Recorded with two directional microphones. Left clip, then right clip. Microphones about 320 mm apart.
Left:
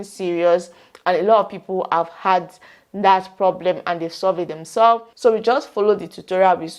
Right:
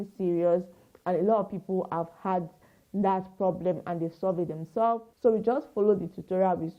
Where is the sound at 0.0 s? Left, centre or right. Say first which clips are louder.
Left 8 dB; centre.